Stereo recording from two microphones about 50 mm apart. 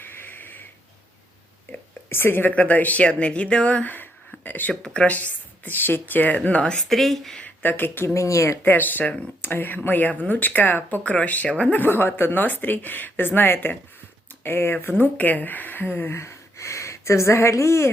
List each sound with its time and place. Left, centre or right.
0.0 s a sound: left
2.0 s a woman's voice: left
2.5 s speech: left
4.3 s a sound: left
4.7 s speech: centre
5.0 s speech: left
6.3 s speech: left
6.8 s speech: centre
7.4 s speech: left
8.0 s speech: left
8.6 s speech: left
11.7 s speech: left
16.1 s a sound: left